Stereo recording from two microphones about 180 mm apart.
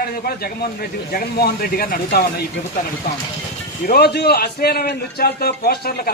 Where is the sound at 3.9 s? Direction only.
65° left (ahead or behind).